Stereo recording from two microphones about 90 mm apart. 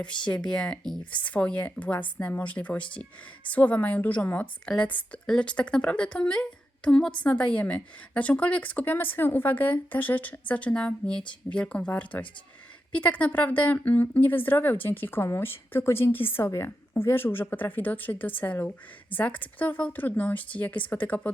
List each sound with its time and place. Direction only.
0.0 s speech: 10° left (ahead or behind)